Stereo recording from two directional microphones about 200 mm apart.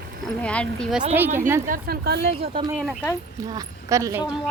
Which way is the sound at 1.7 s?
50° right (ahead or behind).